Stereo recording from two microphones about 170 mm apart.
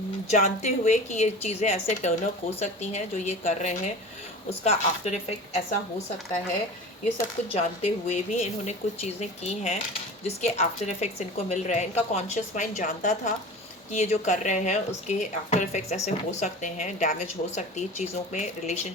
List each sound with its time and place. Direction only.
0.3 s a woman's voice: 45° left (ahead or behind)
7.5 s a woman's voice: 40° left (ahead or behind)